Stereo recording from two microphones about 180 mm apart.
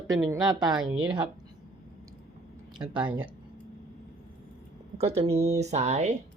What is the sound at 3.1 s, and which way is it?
Speech, 10° right (ahead or behind).